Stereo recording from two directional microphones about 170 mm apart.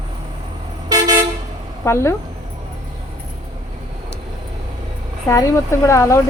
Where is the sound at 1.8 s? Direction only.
15° left (ahead or behind).